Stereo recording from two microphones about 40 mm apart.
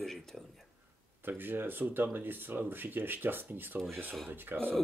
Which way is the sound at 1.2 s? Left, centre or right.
Right.